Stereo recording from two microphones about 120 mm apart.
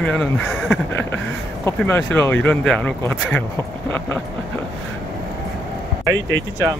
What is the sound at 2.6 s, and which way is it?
Speech, 5° left (ahead or behind).